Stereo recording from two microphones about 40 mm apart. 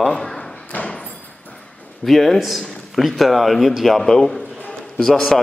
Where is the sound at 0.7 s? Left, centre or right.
Left.